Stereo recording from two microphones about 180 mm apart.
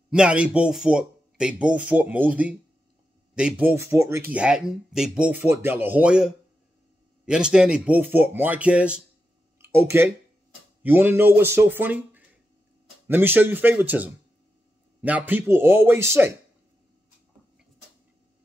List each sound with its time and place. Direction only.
0.1 s speech: 5° right (ahead or behind)
4.3 s speech: 5° right (ahead or behind)